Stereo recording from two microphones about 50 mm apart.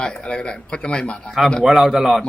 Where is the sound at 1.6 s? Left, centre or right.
Centre.